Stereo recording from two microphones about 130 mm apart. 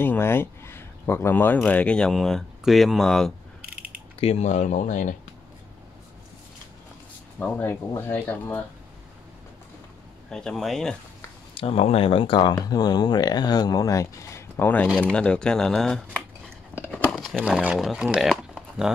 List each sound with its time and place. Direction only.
0.0 s speech: 15° left (ahead or behind)
4.2 s speech: 55° left (ahead or behind); by 5.1 s 75° left (ahead or behind)
7.3 s speech: 10° left (ahead or behind)
10.3 s speech: 5° left (ahead or behind)
11.5 s speech: 50° left (ahead or behind); by 16.3 s 5° left (ahead or behind)
16.7 s a sound: 15° left (ahead or behind)
17.1 s speech: 5° left (ahead or behind)